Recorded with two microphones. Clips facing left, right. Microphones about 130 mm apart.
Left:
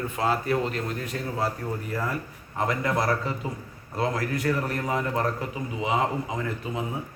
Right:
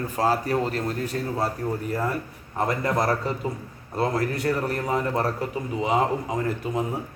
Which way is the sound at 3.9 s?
35° right (ahead or behind).